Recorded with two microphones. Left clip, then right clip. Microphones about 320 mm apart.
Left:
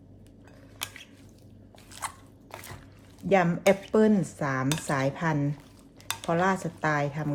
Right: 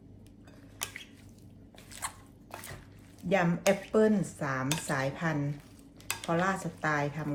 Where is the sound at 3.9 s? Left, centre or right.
Left.